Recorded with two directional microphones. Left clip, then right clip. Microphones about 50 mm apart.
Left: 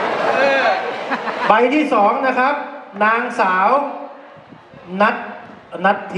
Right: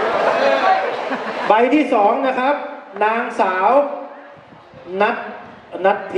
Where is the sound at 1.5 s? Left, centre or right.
Left.